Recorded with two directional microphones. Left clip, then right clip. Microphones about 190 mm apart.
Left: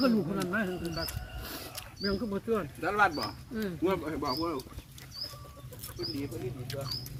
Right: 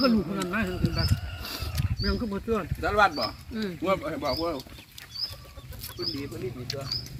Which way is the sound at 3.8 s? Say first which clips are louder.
Right 4 dB; 45° right (ahead or behind).